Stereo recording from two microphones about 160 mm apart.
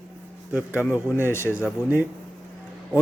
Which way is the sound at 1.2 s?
15° left (ahead or behind).